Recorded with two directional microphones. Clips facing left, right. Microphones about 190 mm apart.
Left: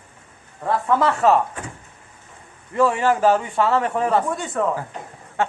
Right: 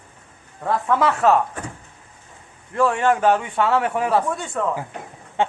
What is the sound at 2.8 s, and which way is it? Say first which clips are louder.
A man's voice: even; 5° left (ahead or behind).